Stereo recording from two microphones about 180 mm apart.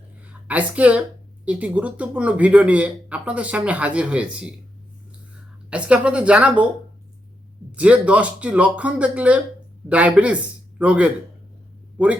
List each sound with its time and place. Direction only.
0.3 s a woman's voice: 10° right (ahead or behind)
5.7 s speech: 5° right (ahead or behind)
7.8 s a man's voice: 5° right (ahead or behind)